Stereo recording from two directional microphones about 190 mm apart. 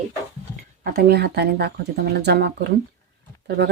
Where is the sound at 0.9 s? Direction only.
55° right (ahead or behind).